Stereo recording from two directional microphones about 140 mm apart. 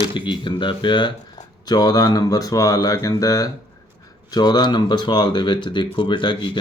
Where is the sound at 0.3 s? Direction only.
35° left (ahead or behind).